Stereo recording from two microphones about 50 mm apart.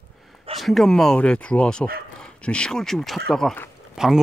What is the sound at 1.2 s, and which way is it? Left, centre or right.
Speech, left.